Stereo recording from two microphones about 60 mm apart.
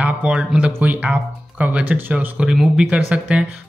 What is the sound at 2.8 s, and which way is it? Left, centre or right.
Speech, centre.